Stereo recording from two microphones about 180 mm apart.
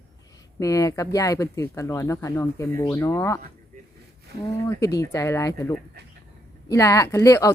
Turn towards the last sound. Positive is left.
turn(degrees=15)  # may be behind; listen again after turning